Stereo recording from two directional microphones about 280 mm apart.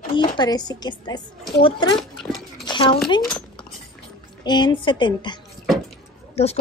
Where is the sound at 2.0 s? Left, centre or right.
Centre.